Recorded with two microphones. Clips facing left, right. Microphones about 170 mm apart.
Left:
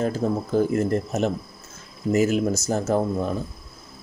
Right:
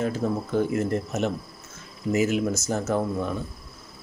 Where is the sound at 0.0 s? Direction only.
35° left (ahead or behind).